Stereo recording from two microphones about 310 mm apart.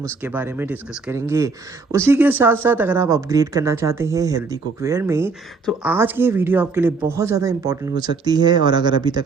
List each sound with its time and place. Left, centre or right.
0.0 s a woman's voice: centre